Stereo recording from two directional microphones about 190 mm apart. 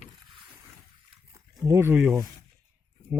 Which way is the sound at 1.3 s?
15° right (ahead or behind).